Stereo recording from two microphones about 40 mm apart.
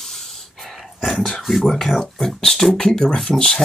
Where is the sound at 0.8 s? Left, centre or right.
Centre.